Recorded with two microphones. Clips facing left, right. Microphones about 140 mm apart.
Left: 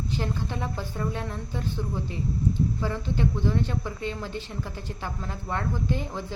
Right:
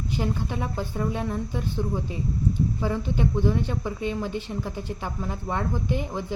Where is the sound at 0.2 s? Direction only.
15° right (ahead or behind).